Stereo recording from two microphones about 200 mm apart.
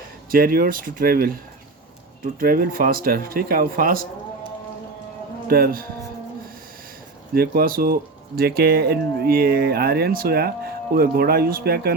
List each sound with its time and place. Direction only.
0.3 s speech: 45° right (ahead or behind)
5.5 s speech: 50° right (ahead or behind)
7.3 s speech: 45° right (ahead or behind)